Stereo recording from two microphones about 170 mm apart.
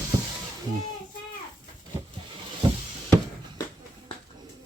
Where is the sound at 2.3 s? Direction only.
30° right (ahead or behind).